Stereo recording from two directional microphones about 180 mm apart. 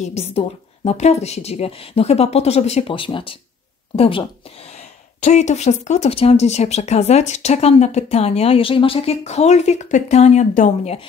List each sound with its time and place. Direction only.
0.1 s speech: 35° left (ahead or behind)